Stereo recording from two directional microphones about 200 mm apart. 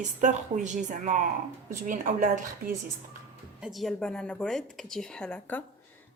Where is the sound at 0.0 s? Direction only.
40° right (ahead or behind).